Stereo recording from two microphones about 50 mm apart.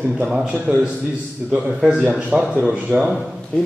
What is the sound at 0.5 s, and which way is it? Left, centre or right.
Speech, right.